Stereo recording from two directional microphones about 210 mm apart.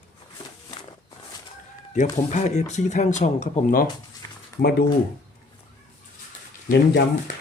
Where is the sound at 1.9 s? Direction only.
35° left (ahead or behind).